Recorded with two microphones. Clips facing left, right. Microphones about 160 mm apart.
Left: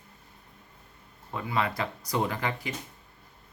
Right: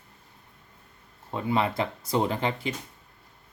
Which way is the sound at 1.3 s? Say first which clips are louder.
Right 4 dB; 25° right (ahead or behind).